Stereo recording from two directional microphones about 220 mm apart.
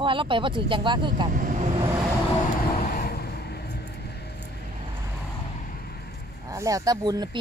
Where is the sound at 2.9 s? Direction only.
45° left (ahead or behind).